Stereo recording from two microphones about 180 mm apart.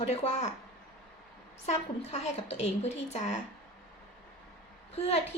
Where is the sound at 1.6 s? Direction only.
35° left (ahead or behind).